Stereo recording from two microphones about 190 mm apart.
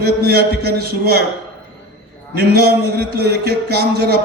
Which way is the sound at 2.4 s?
55° right (ahead or behind).